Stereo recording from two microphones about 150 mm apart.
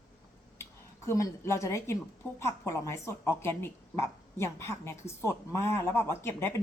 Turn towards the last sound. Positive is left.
turn(degrees=15)  # may be behind; listen again after turning